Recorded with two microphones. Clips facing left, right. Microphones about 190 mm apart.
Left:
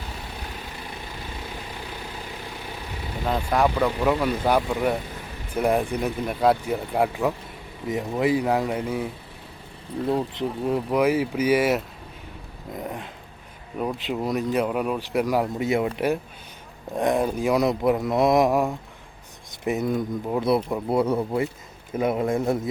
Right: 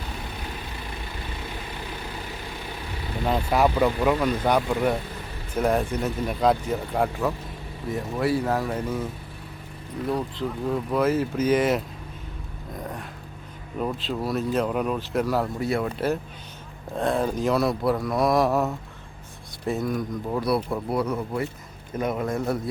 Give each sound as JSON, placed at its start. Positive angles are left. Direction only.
{"t": 3.2, "sound": "speech", "side_deg": -5}
{"t": 10.1, "sound": "speech", "side_deg": 25}
{"t": 12.7, "sound": "dog", "side_deg": 20}
{"t": 13.7, "sound": "speech", "side_deg": 15}